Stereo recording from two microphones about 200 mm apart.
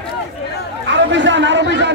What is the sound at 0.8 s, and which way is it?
Chatter, 65° right (ahead or behind).